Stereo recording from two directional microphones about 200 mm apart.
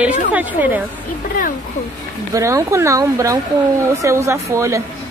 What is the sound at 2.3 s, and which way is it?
Speech, 15° right (ahead or behind).